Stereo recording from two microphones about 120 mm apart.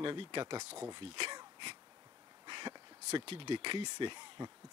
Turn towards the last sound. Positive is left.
turn(degrees=-40)  # may be behind; listen again after turning